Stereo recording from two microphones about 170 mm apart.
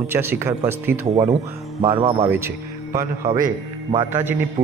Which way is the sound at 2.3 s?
15° right (ahead or behind).